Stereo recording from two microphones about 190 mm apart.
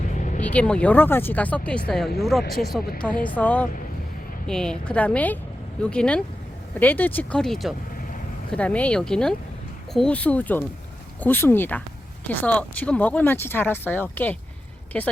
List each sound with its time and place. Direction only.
0.0 s vehicle: 40° left (ahead or behind)
0.4 s speech: 5° left (ahead or behind)